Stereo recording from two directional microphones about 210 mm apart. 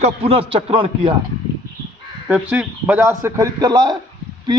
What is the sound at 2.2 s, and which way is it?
A man's voice, 5° right (ahead or behind).